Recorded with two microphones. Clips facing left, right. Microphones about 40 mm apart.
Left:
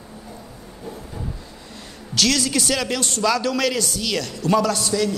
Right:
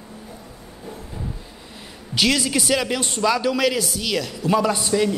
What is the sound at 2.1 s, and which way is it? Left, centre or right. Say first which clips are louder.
A man's voice: even; centre.